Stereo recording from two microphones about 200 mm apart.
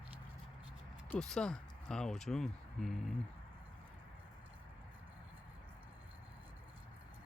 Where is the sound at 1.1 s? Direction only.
5° left (ahead or behind).